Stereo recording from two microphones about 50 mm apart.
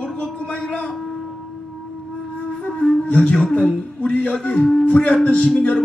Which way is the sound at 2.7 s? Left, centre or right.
Centre.